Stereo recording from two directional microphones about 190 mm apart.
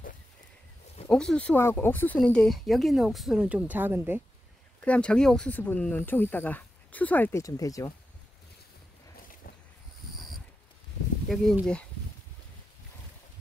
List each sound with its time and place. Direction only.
1.0 s speech: 5° left (ahead or behind)
4.8 s speech: 5° left (ahead or behind)
11.2 s speech: centre (ahead or behind)